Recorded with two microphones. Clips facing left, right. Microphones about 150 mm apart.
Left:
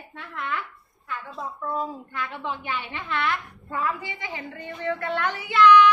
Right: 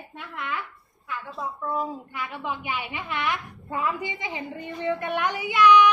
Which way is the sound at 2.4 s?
10° right (ahead or behind).